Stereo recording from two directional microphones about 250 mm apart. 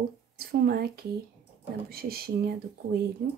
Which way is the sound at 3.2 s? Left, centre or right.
Right.